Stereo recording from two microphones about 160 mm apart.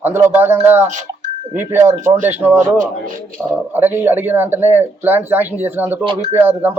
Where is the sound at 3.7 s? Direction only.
15° right (ahead or behind).